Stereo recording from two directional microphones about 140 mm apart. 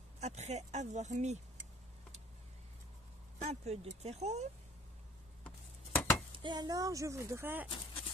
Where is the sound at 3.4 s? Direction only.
50° right (ahead or behind).